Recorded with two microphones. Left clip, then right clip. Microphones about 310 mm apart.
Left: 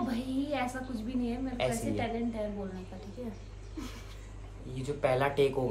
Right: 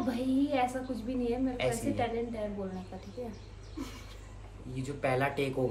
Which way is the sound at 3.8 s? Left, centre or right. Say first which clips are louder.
Right 1 dB; centre.